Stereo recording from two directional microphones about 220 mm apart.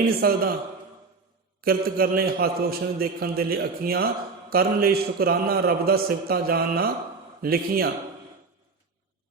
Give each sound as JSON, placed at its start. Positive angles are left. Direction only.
{"t": 0.2, "sound": "a man's voice", "side_deg": -45}
{"t": 1.6, "sound": "a man's voice", "side_deg": -45}